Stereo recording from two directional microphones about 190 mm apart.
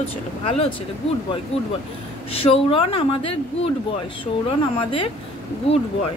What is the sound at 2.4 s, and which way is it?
Speech, 30° left (ahead or behind).